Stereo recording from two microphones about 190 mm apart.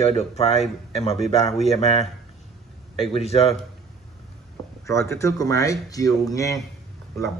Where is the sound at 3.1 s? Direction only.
30° left (ahead or behind).